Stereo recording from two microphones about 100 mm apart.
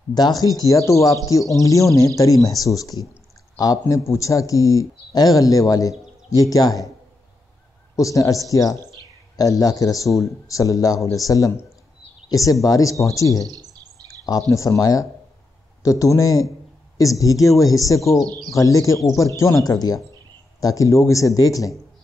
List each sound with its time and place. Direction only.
0.1 s a man's voice: 40° left (ahead or behind)
7.9 s a man's voice: 35° left (ahead or behind)
14.5 s a man's voice: 35° left (ahead or behind)